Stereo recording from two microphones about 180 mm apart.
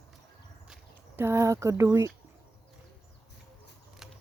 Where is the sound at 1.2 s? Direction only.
15° right (ahead or behind).